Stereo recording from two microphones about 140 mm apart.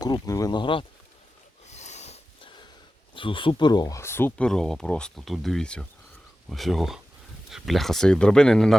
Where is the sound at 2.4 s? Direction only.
35° left (ahead or behind).